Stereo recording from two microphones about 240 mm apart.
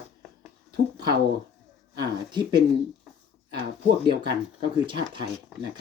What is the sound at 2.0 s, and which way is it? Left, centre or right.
Speech, centre.